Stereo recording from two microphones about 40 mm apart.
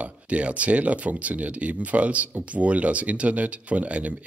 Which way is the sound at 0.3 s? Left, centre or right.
Right.